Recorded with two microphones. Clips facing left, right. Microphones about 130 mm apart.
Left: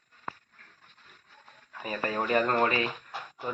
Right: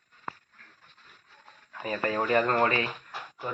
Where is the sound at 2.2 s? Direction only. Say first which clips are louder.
Right 1 dB; 20° left (ahead or behind).